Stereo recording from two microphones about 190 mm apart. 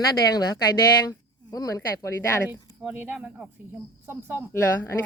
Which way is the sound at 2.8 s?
10° right (ahead or behind).